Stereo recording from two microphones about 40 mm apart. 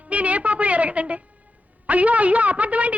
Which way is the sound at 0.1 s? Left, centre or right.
Right.